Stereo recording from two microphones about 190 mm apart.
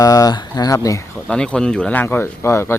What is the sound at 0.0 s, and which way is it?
Speech, 20° left (ahead or behind).